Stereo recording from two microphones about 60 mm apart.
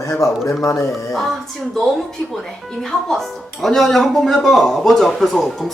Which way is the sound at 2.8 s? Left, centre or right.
Centre.